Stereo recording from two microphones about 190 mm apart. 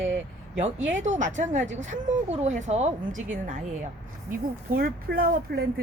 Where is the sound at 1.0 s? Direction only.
40° right (ahead or behind).